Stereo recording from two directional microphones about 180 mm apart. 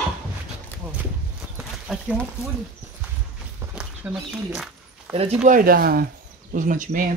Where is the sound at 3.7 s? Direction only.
5° right (ahead or behind).